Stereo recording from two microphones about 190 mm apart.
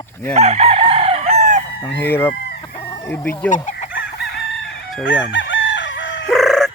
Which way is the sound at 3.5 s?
40° left (ahead or behind).